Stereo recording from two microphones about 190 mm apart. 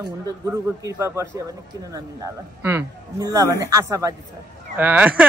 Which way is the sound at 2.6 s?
10° right (ahead or behind).